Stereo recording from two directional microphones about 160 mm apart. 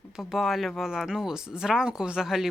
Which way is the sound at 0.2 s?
Centre (ahead or behind).